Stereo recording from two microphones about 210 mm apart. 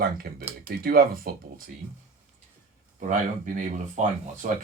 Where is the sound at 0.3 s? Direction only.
45° right (ahead or behind).